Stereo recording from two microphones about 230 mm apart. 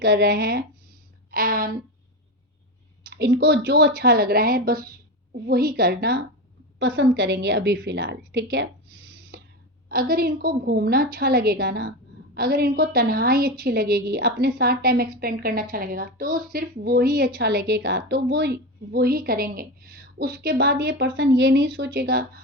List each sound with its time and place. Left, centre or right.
0.0 s a woman's voice: right
3.1 s a woman's voice: right
9.3 s a sound: right
9.9 s a woman's voice: right